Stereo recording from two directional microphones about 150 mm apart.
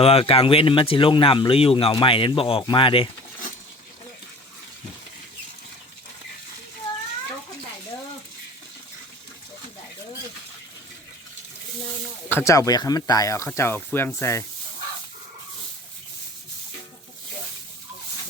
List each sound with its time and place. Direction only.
0.0 s speech: 40° left (ahead or behind)
12.3 s speech: 20° left (ahead or behind)